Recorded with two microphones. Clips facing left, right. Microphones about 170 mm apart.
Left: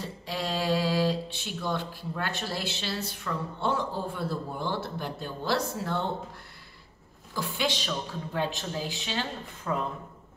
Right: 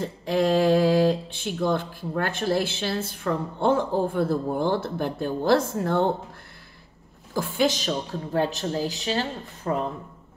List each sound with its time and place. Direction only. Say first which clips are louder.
0.0 s speech: right 11 dB; 50° right (ahead or behind)
7.3 s a woman's voice: right 7 dB; 45° right (ahead or behind)